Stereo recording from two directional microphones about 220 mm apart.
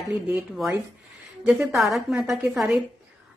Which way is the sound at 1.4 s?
Centre (ahead or behind).